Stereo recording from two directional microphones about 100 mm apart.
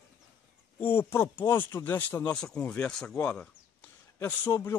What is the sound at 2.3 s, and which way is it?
Speech, 10° left (ahead or behind).